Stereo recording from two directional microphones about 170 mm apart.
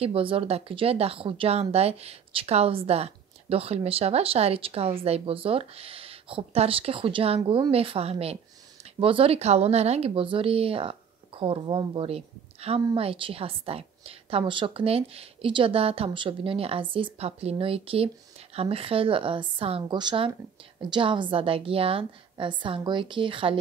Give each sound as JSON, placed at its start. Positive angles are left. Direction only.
{"t": 0.0, "sound": "speech", "side_deg": -35}